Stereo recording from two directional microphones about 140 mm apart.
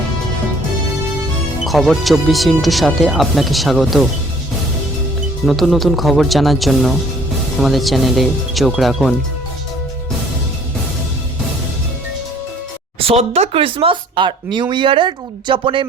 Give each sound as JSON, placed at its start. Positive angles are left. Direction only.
{"t": 1.6, "sound": "speech", "side_deg": 0}
{"t": 5.5, "sound": "speech", "side_deg": 0}
{"t": 13.0, "sound": "speech", "side_deg": -45}